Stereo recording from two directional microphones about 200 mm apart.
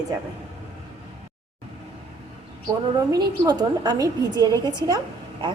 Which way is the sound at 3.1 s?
20° right (ahead or behind).